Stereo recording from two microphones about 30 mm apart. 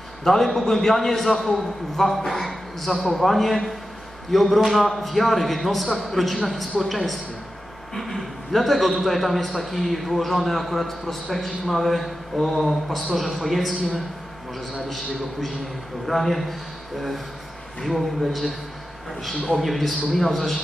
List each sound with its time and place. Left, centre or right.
0.2 s a man's voice: centre
16.1 s a man's voice: centre
17.8 s a man's voice: centre